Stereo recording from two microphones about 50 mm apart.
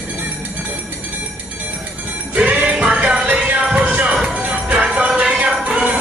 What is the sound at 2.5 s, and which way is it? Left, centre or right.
Music, right.